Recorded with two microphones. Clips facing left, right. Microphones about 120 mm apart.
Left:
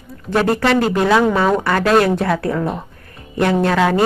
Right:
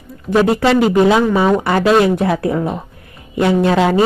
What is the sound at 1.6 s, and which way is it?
Speech, 20° right (ahead or behind).